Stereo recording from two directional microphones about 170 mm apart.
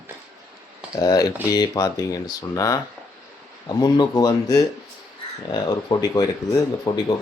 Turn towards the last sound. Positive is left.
turn(degrees=20)  # may be behind; listen again after turning